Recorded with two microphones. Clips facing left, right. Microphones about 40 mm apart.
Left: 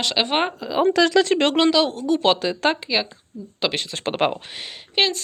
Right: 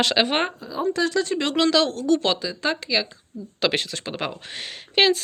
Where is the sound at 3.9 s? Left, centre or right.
Left.